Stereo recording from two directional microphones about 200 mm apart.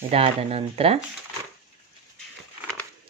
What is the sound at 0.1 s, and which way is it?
Speech, 30° right (ahead or behind).